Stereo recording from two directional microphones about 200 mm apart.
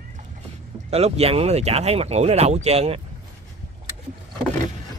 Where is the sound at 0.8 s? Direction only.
30° right (ahead or behind).